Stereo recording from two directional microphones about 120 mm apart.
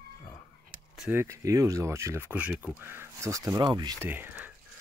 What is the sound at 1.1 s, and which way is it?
Speech, 25° right (ahead or behind).